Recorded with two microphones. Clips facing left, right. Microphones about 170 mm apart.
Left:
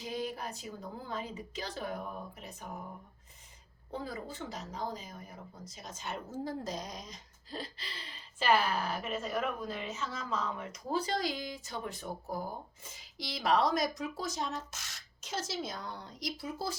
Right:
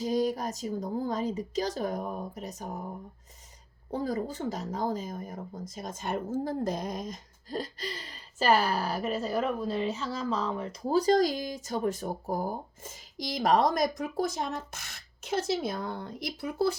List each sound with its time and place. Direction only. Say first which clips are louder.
0.0 s speech: right 10 dB; 40° right (ahead or behind)
3.9 s speech: right 9 dB; 40° right (ahead or behind); by 16.7 s 60° right (ahead or behind)